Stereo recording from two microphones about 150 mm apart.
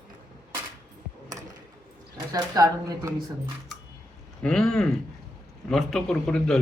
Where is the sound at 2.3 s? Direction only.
25° right (ahead or behind).